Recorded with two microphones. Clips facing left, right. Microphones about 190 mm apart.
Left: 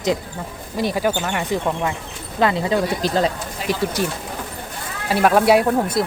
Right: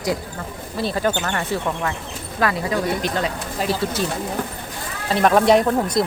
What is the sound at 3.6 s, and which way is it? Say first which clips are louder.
Speech: left 1 dB; 15° left (ahead or behind).